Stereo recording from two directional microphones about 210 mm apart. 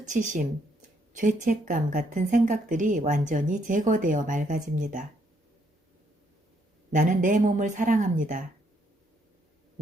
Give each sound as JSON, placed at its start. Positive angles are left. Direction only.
{"t": 0.0, "sound": "speech", "side_deg": -35}
{"t": 6.9, "sound": "speech", "side_deg": -40}